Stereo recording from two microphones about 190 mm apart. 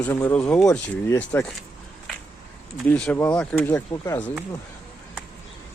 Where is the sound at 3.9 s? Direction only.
20° left (ahead or behind).